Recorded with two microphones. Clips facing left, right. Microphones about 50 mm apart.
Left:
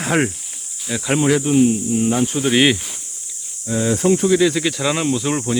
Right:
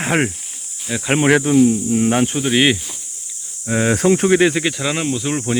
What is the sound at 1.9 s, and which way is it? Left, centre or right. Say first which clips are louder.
Speech: right 2 dB; right.